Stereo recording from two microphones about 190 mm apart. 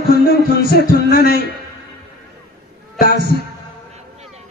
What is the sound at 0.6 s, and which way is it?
Speech, 55° right (ahead or behind).